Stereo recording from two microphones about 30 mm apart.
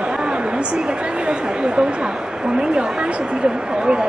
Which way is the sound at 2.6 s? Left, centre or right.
Right.